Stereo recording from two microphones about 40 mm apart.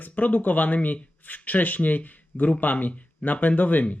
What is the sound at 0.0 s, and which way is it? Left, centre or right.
Speech, left.